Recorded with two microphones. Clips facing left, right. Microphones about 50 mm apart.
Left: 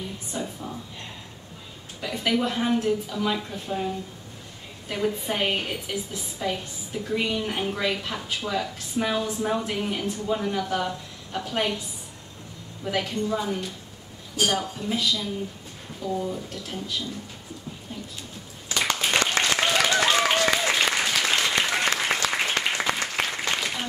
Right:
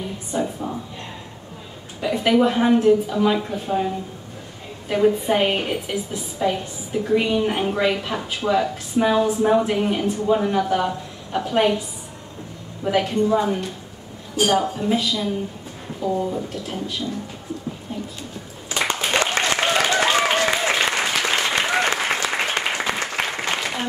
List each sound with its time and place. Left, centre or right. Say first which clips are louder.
0.4 s speech: right 8 dB; right
2.0 s a woman's voice: right 7 dB; right
12.9 s a woman's voice: right 8 dB; right
18.7 s applause: right 2 dB; right